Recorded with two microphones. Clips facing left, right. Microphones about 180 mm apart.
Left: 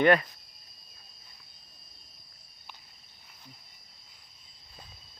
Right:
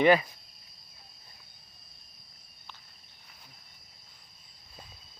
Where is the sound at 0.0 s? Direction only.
Centre (ahead or behind).